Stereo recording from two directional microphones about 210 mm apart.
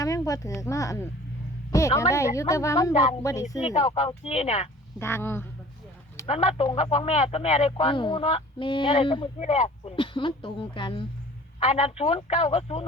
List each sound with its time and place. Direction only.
0.0 s a woman's voice: 15° left (ahead or behind)
2.9 s speech: 35° left (ahead or behind)
4.9 s a woman's voice: 10° left (ahead or behind)
6.2 s speech: 30° left (ahead or behind)